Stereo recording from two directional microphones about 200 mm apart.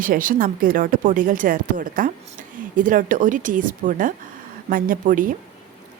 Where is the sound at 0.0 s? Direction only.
45° right (ahead or behind).